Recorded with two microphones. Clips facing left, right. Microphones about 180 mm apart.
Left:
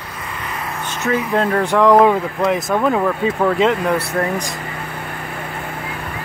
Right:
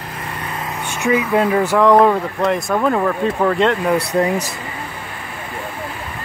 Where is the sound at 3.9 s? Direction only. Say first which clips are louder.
Right 3 dB; 15° right (ahead or behind).